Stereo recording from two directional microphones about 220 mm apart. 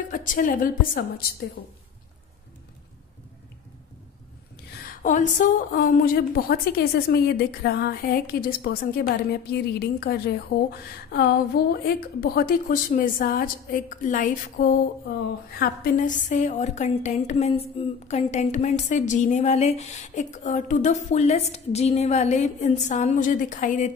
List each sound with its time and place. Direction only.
0.1 s a woman's voice: 35° left (ahead or behind)
5.0 s a woman's voice: 35° left (ahead or behind)